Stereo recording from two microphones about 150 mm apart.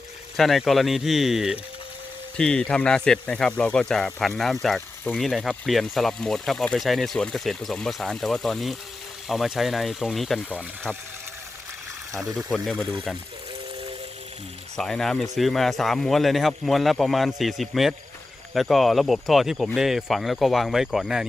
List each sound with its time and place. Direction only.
0.3 s speech: centre (ahead or behind)
12.1 s speech: 20° right (ahead or behind)
12.4 s speech: centre (ahead or behind)
14.8 s speech: 5° left (ahead or behind)